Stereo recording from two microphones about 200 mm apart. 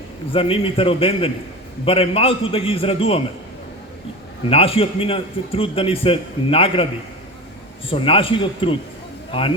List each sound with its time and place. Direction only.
0.3 s a man's voice: 25° left (ahead or behind)
4.4 s a man's voice: 30° left (ahead or behind)
7.9 s a man's voice: 25° left (ahead or behind)